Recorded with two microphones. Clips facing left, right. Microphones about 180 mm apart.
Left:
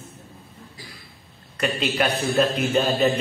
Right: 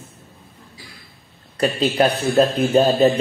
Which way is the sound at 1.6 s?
35° right (ahead or behind).